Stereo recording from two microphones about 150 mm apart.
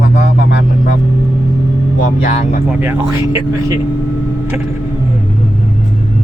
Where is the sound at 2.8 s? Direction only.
15° right (ahead or behind).